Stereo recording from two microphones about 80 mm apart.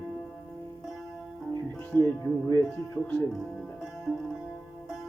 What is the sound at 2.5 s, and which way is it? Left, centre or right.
Speech, left.